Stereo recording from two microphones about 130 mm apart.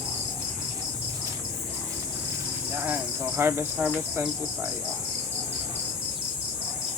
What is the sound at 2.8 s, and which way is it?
Speech, 15° right (ahead or behind).